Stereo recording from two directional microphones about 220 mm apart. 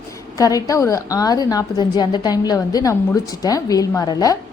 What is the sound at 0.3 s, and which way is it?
A woman's voice, 15° left (ahead or behind).